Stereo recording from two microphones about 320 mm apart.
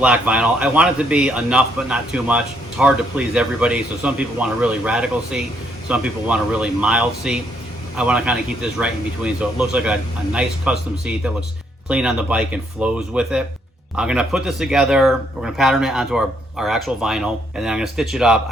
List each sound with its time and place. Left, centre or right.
0.0 s a man's voice: centre